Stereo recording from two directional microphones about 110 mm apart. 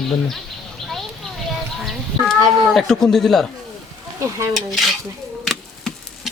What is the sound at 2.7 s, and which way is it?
Speech, 5° left (ahead or behind).